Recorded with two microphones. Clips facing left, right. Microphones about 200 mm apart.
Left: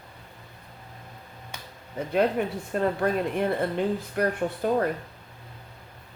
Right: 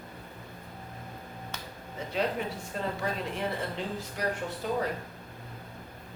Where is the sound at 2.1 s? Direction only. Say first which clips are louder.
Left 7 dB; 55° left (ahead or behind).